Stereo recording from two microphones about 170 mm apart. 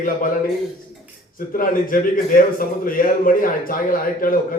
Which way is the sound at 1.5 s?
55° left (ahead or behind).